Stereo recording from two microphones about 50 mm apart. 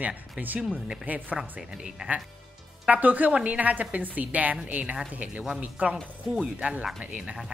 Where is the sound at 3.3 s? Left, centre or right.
Right.